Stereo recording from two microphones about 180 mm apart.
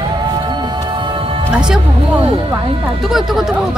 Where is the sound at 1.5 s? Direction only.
5° right (ahead or behind).